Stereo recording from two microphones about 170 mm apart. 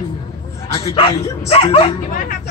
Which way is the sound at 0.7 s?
35° left (ahead or behind).